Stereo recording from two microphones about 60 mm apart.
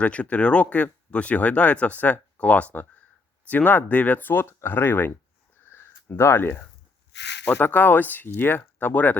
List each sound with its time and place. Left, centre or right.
0.0 s speech: left
5.6 s a sound: left
7.4 s speech: left